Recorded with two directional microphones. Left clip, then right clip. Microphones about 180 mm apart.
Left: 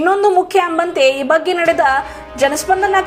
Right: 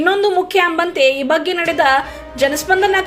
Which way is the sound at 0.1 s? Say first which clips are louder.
Left 3 dB; 35° right (ahead or behind).